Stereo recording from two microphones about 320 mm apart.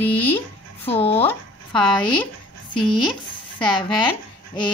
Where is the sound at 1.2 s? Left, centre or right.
Centre.